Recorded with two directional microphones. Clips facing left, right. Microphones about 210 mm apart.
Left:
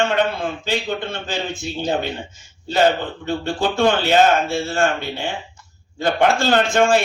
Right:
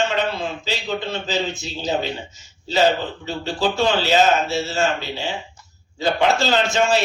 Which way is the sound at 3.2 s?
55° left (ahead or behind).